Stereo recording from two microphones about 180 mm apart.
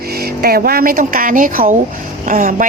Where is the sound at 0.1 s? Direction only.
60° right (ahead or behind).